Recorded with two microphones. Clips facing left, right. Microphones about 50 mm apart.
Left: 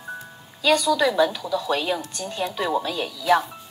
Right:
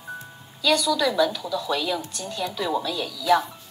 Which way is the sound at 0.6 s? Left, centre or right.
Left.